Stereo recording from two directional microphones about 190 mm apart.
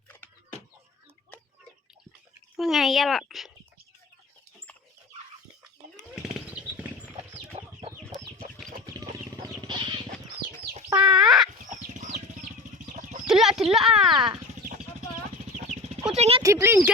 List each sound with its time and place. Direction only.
1.3 s chicken: 10° left (ahead or behind)
2.6 s a child's voice: centre (ahead or behind)
6.5 s a sound: 5° right (ahead or behind)
7.5 s chicken: 30° right (ahead or behind)
9.6 s a sound: 25° right (ahead or behind)
11.0 s a sound: 5° right (ahead or behind)
11.6 s chicken: 40° right (ahead or behind)
13.2 s speech: centre (ahead or behind)
16.1 s speech: 35° right (ahead or behind)
16.4 s speech: 15° right (ahead or behind)